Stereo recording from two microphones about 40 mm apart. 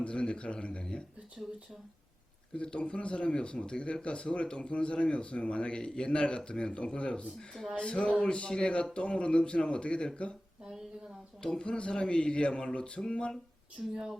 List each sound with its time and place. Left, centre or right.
0.0 s speech: left
1.4 s speech: right
2.6 s speech: left
7.3 s speech: centre
7.8 s speech: left
11.5 s speech: left
13.8 s speech: centre